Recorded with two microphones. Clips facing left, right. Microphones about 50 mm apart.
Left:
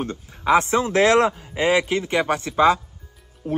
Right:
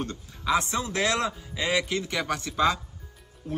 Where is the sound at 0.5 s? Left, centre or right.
Left.